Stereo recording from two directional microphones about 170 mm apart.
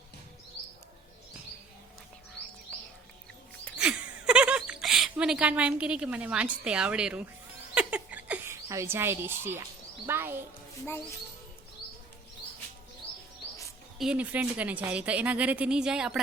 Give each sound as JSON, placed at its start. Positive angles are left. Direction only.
{"t": 3.8, "sound": "a sound", "side_deg": -5}
{"t": 10.1, "sound": "a woman's voice", "side_deg": -15}
{"t": 14.0, "sound": "a woman's voice", "side_deg": -5}